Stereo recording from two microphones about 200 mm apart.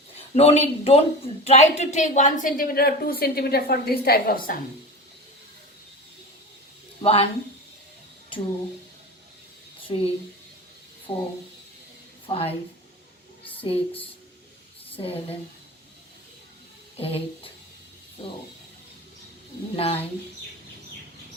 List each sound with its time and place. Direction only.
0.2 s speech: 30° left (ahead or behind); by 4.5 s 45° left (ahead or behind)
7.0 s speech: 30° left (ahead or behind)
9.9 s speech: 25° left (ahead or behind)
11.1 s a woman's voice: 25° left (ahead or behind)
13.4 s a sound: 25° left (ahead or behind)
14.9 s speech: 30° left (ahead or behind)
17.0 s speech: 30° left (ahead or behind)
19.7 s speech: 30° left (ahead or behind)